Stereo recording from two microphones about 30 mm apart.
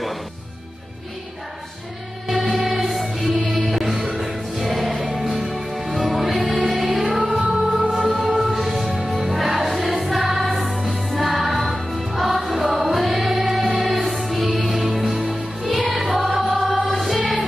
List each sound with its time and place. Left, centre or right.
2.5 s music: centre
7.3 s music: right
7.9 s music: centre